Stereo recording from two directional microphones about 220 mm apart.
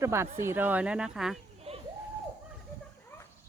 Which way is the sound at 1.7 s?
25° right (ahead or behind).